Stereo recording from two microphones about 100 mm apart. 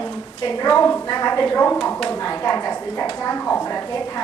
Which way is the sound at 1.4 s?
20° left (ahead or behind).